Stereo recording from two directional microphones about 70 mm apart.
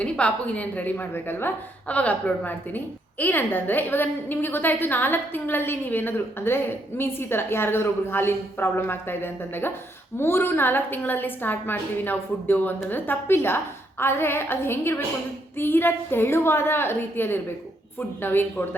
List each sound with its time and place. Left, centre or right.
0.0 s a woman's voice: centre